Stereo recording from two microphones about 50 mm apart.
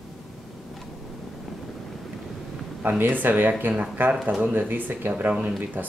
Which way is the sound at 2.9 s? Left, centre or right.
Right.